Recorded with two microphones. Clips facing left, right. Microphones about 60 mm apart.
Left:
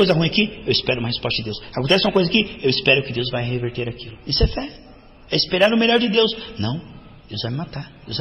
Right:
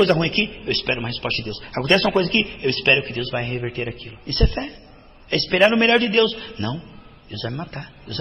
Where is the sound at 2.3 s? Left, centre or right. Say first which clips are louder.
Left 2 dB; right.